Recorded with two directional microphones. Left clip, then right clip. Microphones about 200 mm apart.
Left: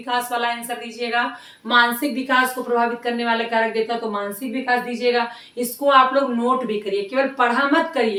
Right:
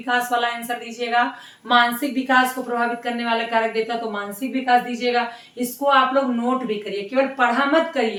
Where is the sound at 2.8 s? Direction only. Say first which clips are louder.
Left 2 dB; 5° left (ahead or behind).